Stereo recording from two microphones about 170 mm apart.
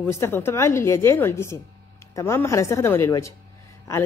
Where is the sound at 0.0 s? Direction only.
15° left (ahead or behind).